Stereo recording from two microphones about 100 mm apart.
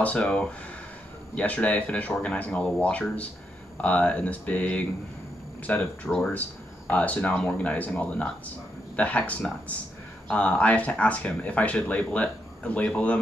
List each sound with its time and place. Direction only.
0.0 s speech: 10° left (ahead or behind)
6.0 s speech: centre (ahead or behind)
6.9 s speech: 15° left (ahead or behind)